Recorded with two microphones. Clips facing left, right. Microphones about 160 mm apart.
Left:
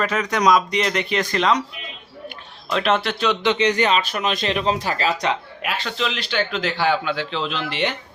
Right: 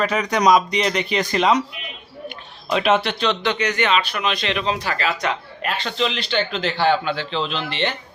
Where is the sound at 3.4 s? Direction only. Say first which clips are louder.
Left 3 dB; 25° left (ahead or behind).